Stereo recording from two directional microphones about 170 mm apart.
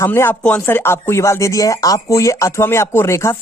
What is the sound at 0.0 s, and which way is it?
Speech, 15° left (ahead or behind).